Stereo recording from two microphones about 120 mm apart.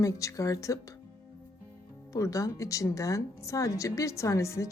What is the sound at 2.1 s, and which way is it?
Speech, 25° left (ahead or behind).